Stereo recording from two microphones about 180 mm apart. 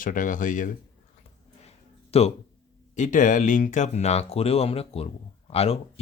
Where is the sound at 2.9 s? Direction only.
45° left (ahead or behind).